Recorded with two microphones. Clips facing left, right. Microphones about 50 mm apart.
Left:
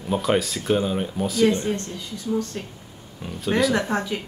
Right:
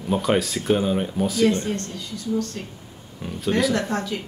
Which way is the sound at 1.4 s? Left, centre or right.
Centre.